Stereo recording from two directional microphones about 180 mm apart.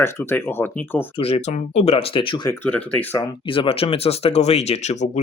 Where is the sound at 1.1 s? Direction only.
35° left (ahead or behind).